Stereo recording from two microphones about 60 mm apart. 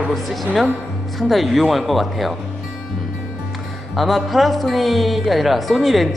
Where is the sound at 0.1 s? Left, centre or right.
Centre.